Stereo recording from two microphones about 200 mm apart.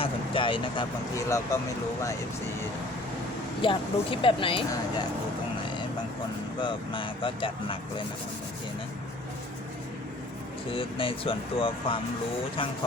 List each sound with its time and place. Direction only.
0.0 s speech: 25° left (ahead or behind)
3.6 s speech: 25° left (ahead or behind)
6.6 s speech: 25° left (ahead or behind)
10.7 s speech: 25° left (ahead or behind)